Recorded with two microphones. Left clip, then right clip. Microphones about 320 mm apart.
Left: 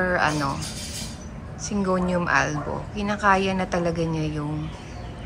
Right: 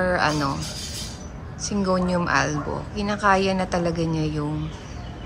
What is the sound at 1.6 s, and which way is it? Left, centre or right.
A woman's voice, centre.